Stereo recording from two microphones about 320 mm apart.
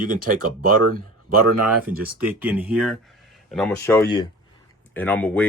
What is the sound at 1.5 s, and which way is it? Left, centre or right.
Speech, right.